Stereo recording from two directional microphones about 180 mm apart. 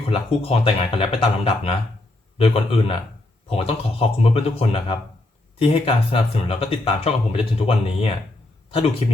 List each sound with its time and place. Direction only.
0.0 s speech: 35° left (ahead or behind)